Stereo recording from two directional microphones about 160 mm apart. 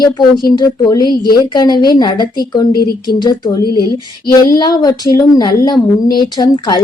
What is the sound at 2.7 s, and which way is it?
Speech, 70° left (ahead or behind).